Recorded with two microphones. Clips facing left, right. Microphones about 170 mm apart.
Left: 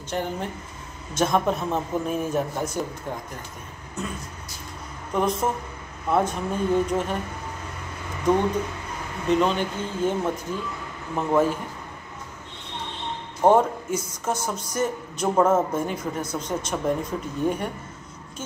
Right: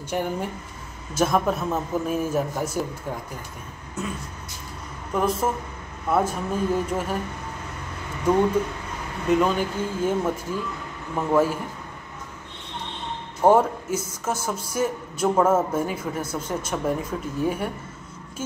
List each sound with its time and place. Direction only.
0.1 s a man's voice: 10° right (ahead or behind)
4.0 s a man's voice: 5° right (ahead or behind)
9.3 s speech: 5° right (ahead or behind)
13.4 s a man's voice: 5° right (ahead or behind)